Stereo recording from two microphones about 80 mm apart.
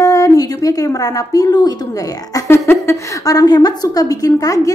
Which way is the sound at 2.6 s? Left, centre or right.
Left.